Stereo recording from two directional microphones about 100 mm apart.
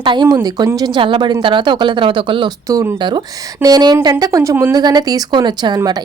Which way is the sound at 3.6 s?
40° right (ahead or behind).